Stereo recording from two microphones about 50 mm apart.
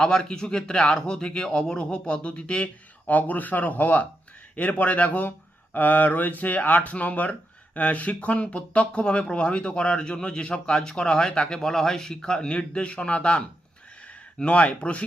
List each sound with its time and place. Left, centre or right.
0.0 s a man's voice: centre
3.1 s speech: left